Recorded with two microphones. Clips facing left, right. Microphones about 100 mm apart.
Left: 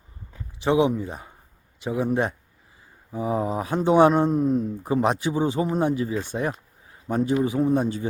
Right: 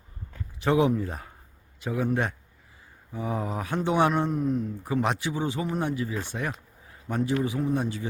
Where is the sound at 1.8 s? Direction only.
20° left (ahead or behind).